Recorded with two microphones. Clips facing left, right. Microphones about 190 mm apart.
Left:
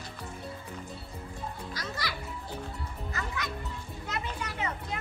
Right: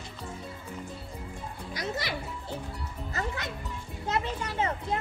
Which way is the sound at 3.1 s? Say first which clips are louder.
Right 3 dB; 30° right (ahead or behind).